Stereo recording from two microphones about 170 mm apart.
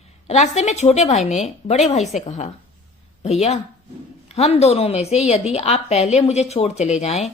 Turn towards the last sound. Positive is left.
turn(degrees=40)  # may be behind; listen again after turning